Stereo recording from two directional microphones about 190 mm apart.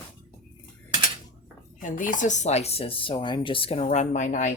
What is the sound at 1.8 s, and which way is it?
Speech, 45° left (ahead or behind).